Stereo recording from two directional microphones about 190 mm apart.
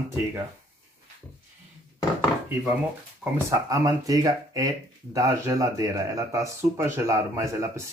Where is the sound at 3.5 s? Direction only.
20° right (ahead or behind).